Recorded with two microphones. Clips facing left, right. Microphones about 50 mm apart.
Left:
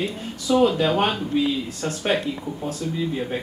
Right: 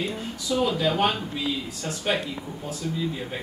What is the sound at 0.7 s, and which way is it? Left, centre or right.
Speech, left.